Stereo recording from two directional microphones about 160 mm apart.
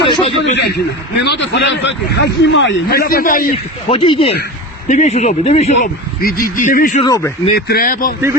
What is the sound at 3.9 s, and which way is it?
Speech, 35° left (ahead or behind).